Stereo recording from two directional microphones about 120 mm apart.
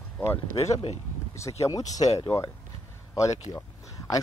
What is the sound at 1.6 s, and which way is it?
Speech, 30° left (ahead or behind).